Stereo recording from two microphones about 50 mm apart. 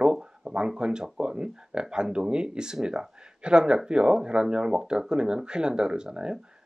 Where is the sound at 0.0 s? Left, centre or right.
Centre.